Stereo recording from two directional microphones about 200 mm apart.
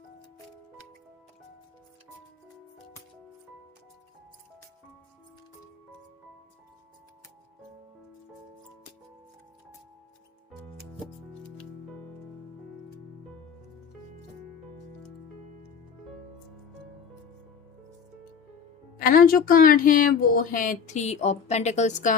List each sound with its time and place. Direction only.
18.9 s speech: 45° left (ahead or behind)